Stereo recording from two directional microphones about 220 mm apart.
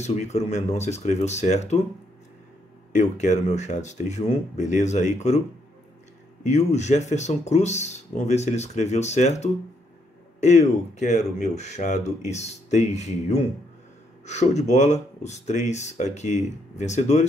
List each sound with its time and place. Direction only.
0.0 s speech: 30° left (ahead or behind)
2.9 s speech: 30° left (ahead or behind)
6.4 s speech: 30° left (ahead or behind)